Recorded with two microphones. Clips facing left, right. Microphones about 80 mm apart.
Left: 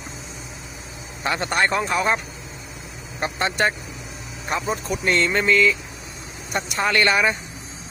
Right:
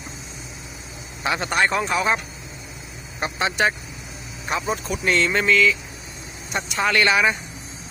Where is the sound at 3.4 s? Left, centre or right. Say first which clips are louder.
Right 1 dB; centre.